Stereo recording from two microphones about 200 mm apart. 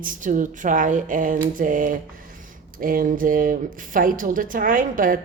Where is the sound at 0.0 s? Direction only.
40° right (ahead or behind).